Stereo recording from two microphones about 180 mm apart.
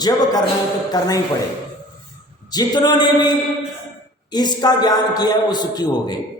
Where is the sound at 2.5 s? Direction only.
20° left (ahead or behind).